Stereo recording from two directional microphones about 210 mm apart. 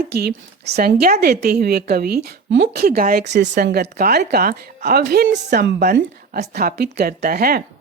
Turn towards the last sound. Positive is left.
turn(degrees=-45)  # may be behind; listen again after turning